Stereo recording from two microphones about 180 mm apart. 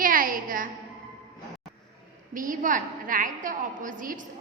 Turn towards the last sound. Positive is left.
turn(degrees=-50)  # may be behind; listen again after turning